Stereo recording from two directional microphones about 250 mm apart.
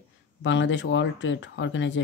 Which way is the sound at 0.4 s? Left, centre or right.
Left.